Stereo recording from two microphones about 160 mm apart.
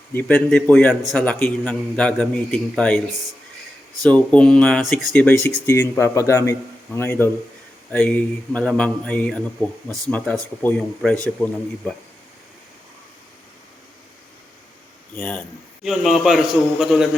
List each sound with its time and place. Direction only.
0.1 s a man's voice: 10° left (ahead or behind)
4.0 s a man's voice: 5° left (ahead or behind)
5.7 s a man's voice: 15° left (ahead or behind)
15.1 s a man's voice: 10° left (ahead or behind)
15.8 s a man's voice: centre (ahead or behind)